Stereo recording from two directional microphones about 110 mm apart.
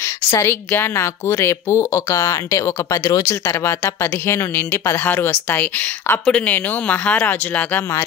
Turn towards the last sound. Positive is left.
turn(degrees=15)  # may be behind; listen again after turning